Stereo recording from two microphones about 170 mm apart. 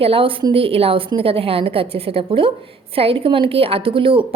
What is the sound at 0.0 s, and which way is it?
A woman's voice, 30° right (ahead or behind).